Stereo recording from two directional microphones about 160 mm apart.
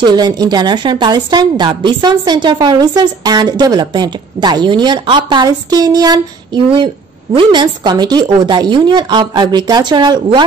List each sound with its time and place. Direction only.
0.0 s a woman's voice: 25° right (ahead or behind)